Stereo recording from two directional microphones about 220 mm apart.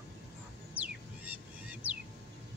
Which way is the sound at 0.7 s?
5° right (ahead or behind).